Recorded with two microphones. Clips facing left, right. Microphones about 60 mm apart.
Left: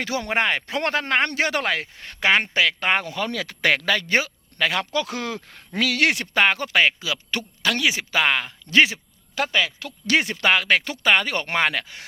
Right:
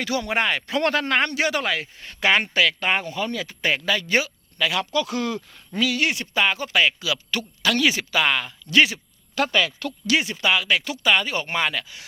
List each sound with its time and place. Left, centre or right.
0.0 s speech: left
1.3 s speech: left
2.5 s speech: left
2.8 s speech: left
3.1 s speech: left
4.1 s speech: left
5.7 s speech: left
6.7 s speech: left
7.8 s speech: centre
8.1 s speech: left
9.3 s speech: centre
10.1 s speech: left
11.3 s speech: left